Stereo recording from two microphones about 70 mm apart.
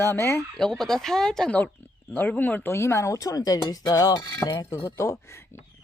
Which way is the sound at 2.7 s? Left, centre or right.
Left.